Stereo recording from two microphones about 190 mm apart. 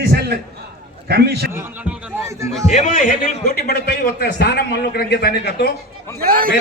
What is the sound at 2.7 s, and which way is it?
A man's voice, 40° left (ahead or behind).